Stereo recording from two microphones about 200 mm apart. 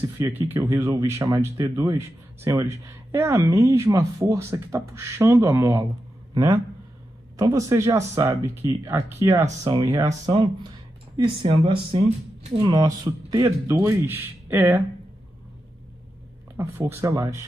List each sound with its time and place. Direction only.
0.2 s a man's voice: 15° right (ahead or behind)
11.2 s speech: 25° right (ahead or behind)
16.5 s speech: 10° right (ahead or behind)